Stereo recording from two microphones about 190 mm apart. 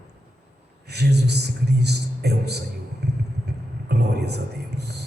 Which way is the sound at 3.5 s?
60° right (ahead or behind).